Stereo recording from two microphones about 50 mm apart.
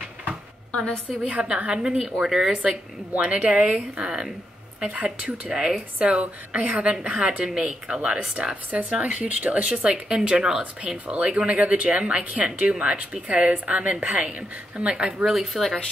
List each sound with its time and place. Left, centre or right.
1.2 s speech: right
2.2 s speech: centre
2.5 s speech: right
6.0 s speech: right
15.2 s speech: centre